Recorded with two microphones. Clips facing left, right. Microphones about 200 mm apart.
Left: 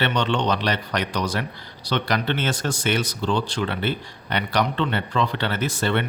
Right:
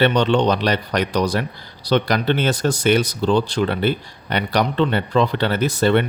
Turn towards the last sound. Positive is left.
turn(degrees=-40)  # may be behind; listen again after turning